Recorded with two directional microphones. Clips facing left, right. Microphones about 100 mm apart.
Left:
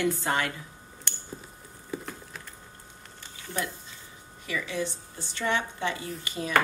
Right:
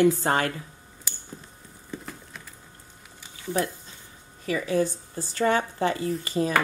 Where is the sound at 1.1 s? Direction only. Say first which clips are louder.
Left 1 dB; 5° right (ahead or behind).